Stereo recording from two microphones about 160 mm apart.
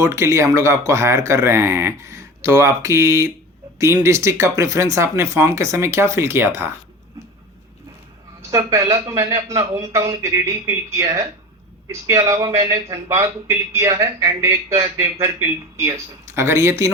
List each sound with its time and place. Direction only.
0.0 s speech: 20° right (ahead or behind)
8.4 s speech: 20° right (ahead or behind)
12.2 s speech: 20° right (ahead or behind)